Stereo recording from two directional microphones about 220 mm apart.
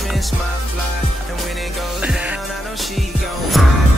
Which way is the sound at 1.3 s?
Centre (ahead or behind).